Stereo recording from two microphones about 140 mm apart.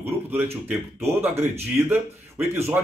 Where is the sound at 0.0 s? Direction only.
15° right (ahead or behind).